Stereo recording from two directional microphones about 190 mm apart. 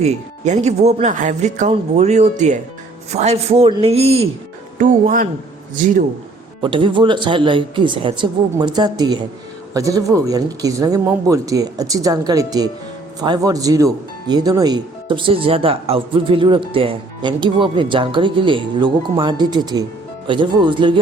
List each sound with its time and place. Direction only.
0.0 s speech: 35° right (ahead or behind)
4.8 s speech: 45° right (ahead or behind)
6.6 s speech: 25° right (ahead or behind)